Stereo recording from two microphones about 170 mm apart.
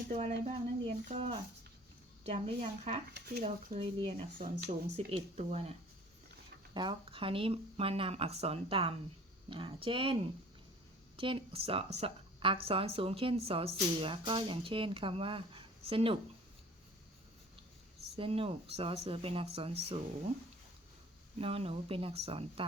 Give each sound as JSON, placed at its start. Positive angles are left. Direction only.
{"t": 0.1, "sound": "speech", "side_deg": -40}
{"t": 3.1, "sound": "speech", "side_deg": -70}
{"t": 3.4, "sound": "speech", "side_deg": -35}
{"t": 4.4, "sound": "speech", "side_deg": -50}
{"t": 5.1, "sound": "speech", "side_deg": -40}
{"t": 6.7, "sound": "speech", "side_deg": -30}
{"t": 11.2, "sound": "speech", "side_deg": -30}
{"t": 18.2, "sound": "speech", "side_deg": -35}
{"t": 21.3, "sound": "speech", "side_deg": -35}